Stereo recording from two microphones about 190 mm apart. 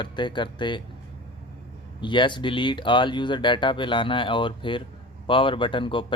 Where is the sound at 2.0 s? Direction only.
25° left (ahead or behind).